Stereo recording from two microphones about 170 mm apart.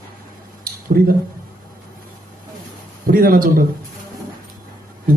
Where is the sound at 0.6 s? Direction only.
60° right (ahead or behind).